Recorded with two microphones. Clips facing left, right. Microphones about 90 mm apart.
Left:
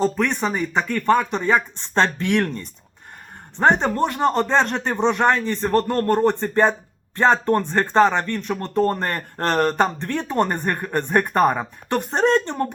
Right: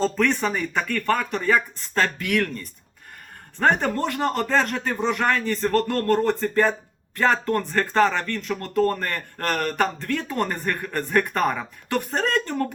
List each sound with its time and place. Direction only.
0.0 s speech: 15° left (ahead or behind)